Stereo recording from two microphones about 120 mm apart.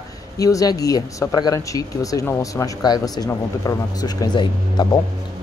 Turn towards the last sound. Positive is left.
turn(degrees=40)  # may be behind; listen again after turning